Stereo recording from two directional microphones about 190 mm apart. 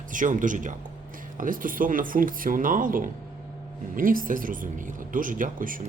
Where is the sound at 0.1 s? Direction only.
45° right (ahead or behind).